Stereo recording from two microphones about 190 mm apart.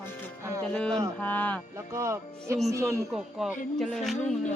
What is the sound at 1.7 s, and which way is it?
Speech, 15° right (ahead or behind).